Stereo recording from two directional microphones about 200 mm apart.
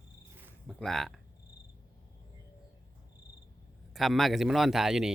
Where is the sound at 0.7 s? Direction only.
Centre (ahead or behind).